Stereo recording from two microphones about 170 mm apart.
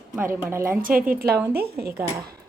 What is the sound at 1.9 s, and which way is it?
Speech, 15° right (ahead or behind).